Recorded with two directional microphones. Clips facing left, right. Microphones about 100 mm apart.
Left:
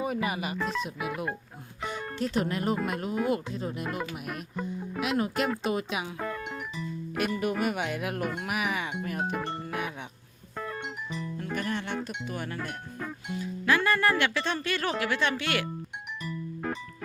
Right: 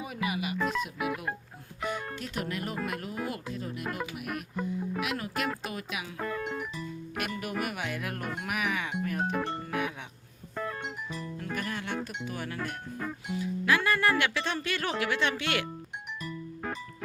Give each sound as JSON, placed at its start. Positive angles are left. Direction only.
{"t": 0.0, "sound": "speech", "side_deg": 40}
{"t": 2.1, "sound": "speech", "side_deg": 30}
{"t": 6.1, "sound": "music", "side_deg": 0}
{"t": 7.2, "sound": "speech", "side_deg": 25}
{"t": 9.5, "sound": "music", "side_deg": 0}
{"t": 13.4, "sound": "speech", "side_deg": -10}